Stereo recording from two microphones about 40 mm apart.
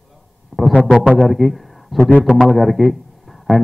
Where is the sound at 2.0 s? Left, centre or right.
Left.